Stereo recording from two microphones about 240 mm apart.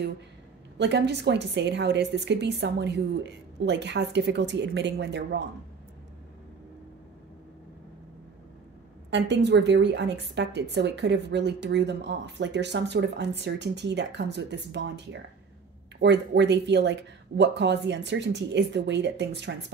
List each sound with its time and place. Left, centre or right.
0.7 s a woman's voice: right
9.1 s a woman's voice: right
16.0 s a woman's voice: right